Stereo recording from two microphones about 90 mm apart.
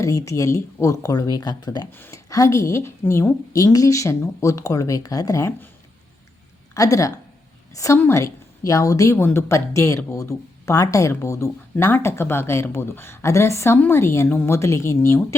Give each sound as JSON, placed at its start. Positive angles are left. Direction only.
{"t": 0.0, "sound": "speech", "side_deg": 35}
{"t": 1.9, "sound": "speech", "side_deg": 25}
{"t": 3.5, "sound": "speech", "side_deg": 40}
{"t": 6.7, "sound": "a woman's voice", "side_deg": 40}
{"t": 9.1, "sound": "speech", "side_deg": 25}